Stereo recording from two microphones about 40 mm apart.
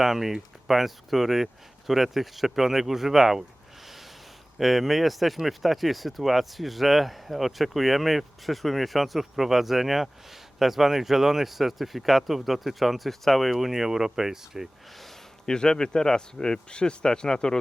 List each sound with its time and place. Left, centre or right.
0.0 s speech: centre
3.8 s a sound: centre
4.5 s speech: centre
15.4 s speech: centre